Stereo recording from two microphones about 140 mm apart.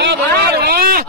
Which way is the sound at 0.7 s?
90° right.